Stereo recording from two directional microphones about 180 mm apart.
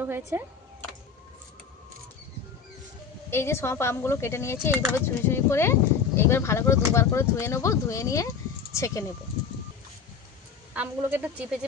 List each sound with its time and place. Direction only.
0.0 s a woman's voice: 10° right (ahead or behind)
3.3 s speech: 15° left (ahead or behind)
10.7 s a woman's voice: 10° right (ahead or behind)